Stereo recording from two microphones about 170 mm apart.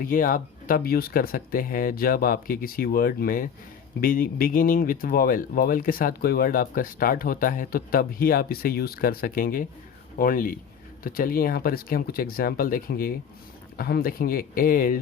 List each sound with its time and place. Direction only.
0.0 s speech: 55° left (ahead or behind)